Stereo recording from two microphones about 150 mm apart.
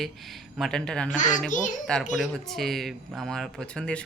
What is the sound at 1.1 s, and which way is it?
Speech, 55° left (ahead or behind).